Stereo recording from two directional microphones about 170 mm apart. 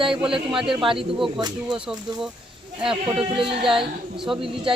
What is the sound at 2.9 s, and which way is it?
Speech, 30° right (ahead or behind).